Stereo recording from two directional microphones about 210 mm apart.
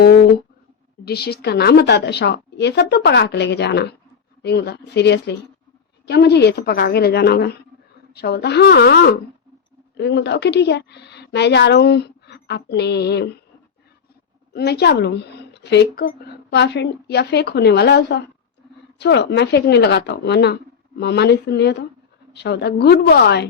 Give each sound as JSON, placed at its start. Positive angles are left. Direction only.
{"t": 1.0, "sound": "speech", "side_deg": 50}
{"t": 14.5, "sound": "speech", "side_deg": 50}